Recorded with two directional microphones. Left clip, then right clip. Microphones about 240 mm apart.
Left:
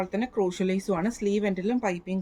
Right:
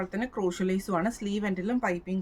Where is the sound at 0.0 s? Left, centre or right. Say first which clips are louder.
Left 3 dB; centre.